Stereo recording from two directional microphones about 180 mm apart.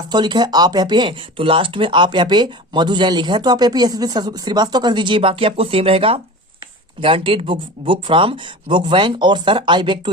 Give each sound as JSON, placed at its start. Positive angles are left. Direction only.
{"t": 0.1, "sound": "speech", "side_deg": -25}